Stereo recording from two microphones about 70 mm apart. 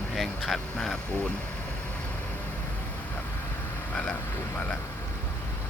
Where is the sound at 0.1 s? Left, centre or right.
Centre.